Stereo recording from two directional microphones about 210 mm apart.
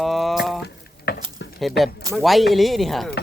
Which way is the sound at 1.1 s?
50° left (ahead or behind).